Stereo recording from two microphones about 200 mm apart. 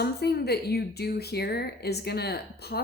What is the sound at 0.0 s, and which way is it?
Speech, 55° left (ahead or behind).